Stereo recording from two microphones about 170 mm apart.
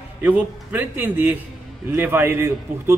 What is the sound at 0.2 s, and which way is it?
A man's voice, 10° right (ahead or behind).